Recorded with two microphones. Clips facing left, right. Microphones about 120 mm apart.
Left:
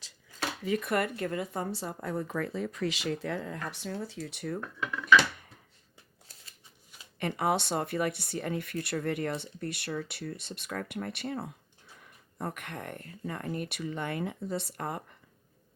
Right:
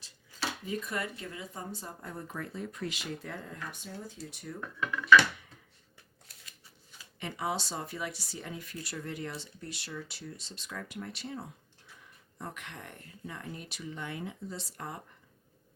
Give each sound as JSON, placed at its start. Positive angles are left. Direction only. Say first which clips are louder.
{"t": 0.6, "sound": "speech", "louder": "left 10 dB", "side_deg": 75}
{"t": 4.6, "sound": "speech", "louder": "even", "side_deg": 5}
{"t": 7.2, "sound": "speech", "louder": "left 6 dB", "side_deg": 60}